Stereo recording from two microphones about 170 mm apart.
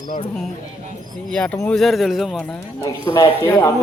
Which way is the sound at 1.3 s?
5° left (ahead or behind).